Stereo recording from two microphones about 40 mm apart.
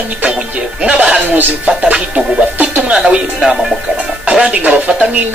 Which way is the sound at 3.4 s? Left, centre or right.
Centre.